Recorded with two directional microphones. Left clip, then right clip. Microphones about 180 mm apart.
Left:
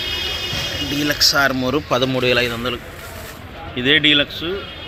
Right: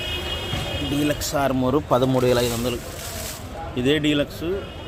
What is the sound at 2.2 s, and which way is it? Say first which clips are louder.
Speech: left 3 dB; 15° right (ahead or behind).